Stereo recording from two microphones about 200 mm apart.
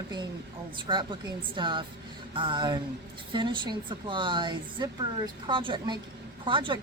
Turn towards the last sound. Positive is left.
turn(degrees=-25)  # may be behind; listen again after turning